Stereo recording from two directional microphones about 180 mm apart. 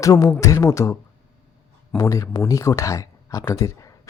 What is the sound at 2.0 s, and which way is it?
Speech, 15° left (ahead or behind).